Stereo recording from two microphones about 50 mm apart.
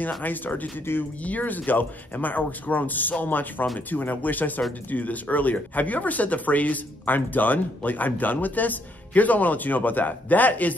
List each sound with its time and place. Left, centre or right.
0.2 s speech: left
0.9 s speech: left
1.2 s speech: left